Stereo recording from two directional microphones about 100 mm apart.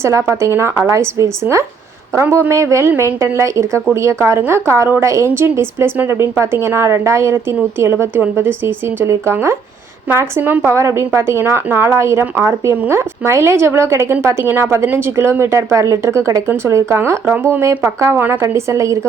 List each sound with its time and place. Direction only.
0.0 s a woman's voice: 25° right (ahead or behind)